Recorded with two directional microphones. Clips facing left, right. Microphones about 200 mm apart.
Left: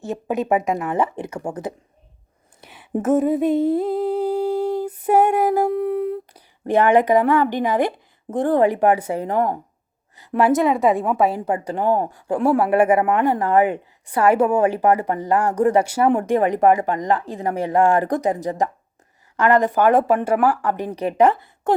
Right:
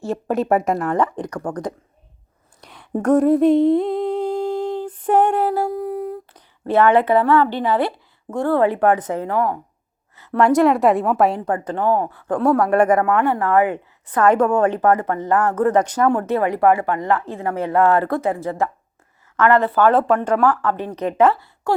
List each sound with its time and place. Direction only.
0.0 s a woman's voice: centre (ahead or behind)
2.6 s humming: 5° left (ahead or behind)
4.7 s female singing: 10° left (ahead or behind)
5.7 s speech: 65° left (ahead or behind)
6.3 s a woman's voice: 15° left (ahead or behind)
11.9 s speech: 25° left (ahead or behind)
12.1 s speech: 10° left (ahead or behind)